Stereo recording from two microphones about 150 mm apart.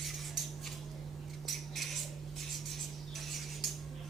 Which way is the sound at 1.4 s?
Centre (ahead or behind).